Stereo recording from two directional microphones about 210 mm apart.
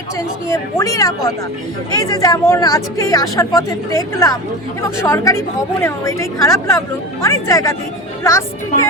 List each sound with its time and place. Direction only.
0.4 s a woman's voice: 15° left (ahead or behind)